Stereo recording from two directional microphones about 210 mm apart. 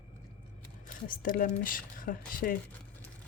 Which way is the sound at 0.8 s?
40° left (ahead or behind).